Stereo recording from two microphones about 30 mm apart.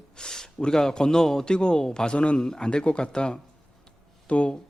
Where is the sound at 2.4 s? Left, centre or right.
Left.